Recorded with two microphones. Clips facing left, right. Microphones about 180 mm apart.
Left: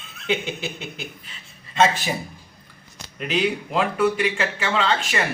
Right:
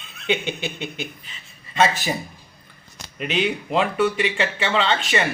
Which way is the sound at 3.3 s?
25° right (ahead or behind).